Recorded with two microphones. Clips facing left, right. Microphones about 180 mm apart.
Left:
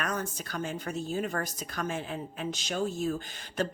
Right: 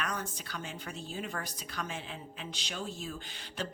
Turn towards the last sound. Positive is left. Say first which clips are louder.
# left 7 dB
turn(degrees=45)  # may be behind; listen again after turning